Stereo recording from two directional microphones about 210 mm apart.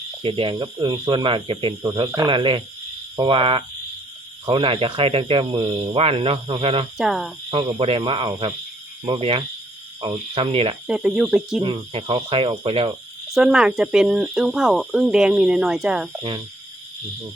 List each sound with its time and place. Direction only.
0.2 s speech: 25° right (ahead or behind)
6.9 s speech: centre (ahead or behind)
7.5 s speech: 25° right (ahead or behind)
10.8 s speech: 5° right (ahead or behind)
11.6 s speech: 25° right (ahead or behind)
13.2 s speech: 5° right (ahead or behind)